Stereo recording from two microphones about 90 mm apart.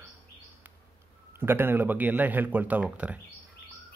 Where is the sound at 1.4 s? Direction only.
25° right (ahead or behind).